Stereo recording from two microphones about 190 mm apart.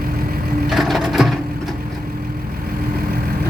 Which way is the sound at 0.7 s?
Centre (ahead or behind).